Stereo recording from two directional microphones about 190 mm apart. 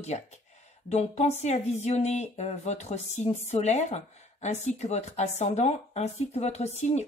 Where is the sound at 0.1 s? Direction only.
35° left (ahead or behind).